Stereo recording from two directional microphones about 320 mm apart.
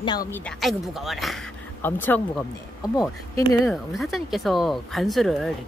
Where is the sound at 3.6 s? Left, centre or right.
Centre.